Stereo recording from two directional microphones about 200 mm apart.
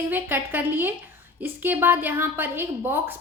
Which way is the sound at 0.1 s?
10° right (ahead or behind).